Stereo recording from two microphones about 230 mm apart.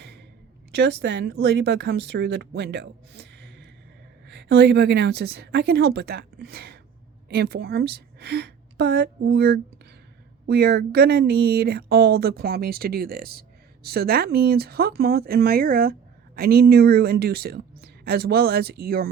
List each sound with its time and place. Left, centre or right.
0.7 s a woman's voice: right